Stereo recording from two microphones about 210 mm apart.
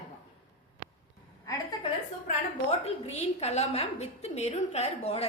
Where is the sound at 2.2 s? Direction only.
30° left (ahead or behind).